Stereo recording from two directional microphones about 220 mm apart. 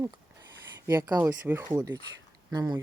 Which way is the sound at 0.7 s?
15° right (ahead or behind).